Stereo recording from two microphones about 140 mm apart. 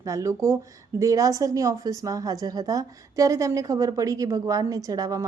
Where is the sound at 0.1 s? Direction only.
20° right (ahead or behind).